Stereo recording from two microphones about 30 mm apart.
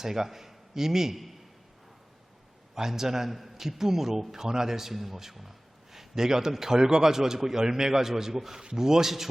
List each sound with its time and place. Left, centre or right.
0.0 s a man's voice: centre
1.1 s a man's voice: centre
2.7 s a man's voice: centre
5.9 s a sound: centre
6.2 s a man's voice: centre